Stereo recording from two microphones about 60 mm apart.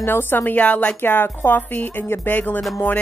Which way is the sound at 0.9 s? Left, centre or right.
Left.